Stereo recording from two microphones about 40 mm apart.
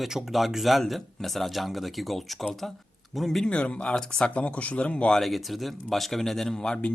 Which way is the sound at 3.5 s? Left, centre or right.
Left.